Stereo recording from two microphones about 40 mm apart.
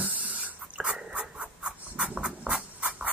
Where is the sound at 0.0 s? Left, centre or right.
Right.